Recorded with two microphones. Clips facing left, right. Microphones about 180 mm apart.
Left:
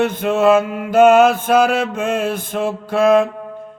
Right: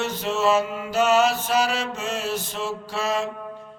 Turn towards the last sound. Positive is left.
turn(degrees=55)  # may be behind; listen again after turning